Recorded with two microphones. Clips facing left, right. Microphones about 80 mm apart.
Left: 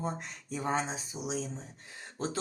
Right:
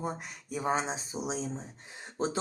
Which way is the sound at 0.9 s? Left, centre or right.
Right.